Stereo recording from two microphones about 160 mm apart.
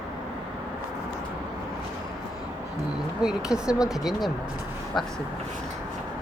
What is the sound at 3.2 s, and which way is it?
Speech, 5° right (ahead or behind).